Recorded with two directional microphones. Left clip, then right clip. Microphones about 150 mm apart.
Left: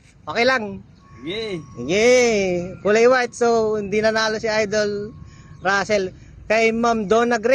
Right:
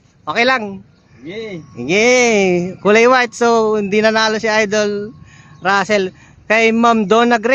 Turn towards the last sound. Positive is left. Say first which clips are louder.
# right 5 dB
turn(degrees=-15)  # may be behind; listen again after turning